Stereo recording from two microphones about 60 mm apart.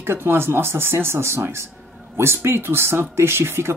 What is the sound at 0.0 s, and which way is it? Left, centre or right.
Speech, right.